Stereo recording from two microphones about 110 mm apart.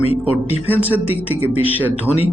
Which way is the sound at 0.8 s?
15° right (ahead or behind).